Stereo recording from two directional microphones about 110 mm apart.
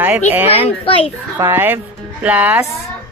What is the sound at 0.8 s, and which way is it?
Speech, 60° left (ahead or behind).